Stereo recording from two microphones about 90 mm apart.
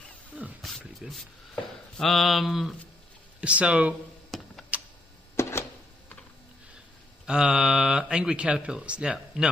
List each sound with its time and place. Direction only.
0.3 s speech: 10° right (ahead or behind)
3.3 s speech: 15° right (ahead or behind)
4.3 s typing: centre (ahead or behind)
4.7 s a sound: 15° right (ahead or behind)
5.3 s a sound: 30° left (ahead or behind)
7.2 s speech: 10° right (ahead or behind)